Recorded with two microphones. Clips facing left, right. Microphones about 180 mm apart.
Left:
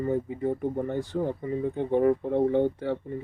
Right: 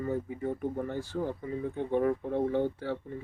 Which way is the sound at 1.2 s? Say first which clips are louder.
Left 5 dB; 55° left (ahead or behind).